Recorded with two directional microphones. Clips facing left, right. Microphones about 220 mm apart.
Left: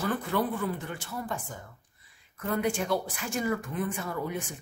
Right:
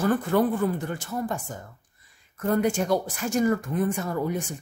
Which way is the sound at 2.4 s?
45° right (ahead or behind).